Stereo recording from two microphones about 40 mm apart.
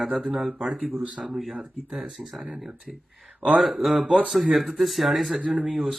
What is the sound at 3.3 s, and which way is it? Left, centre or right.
Speech, right.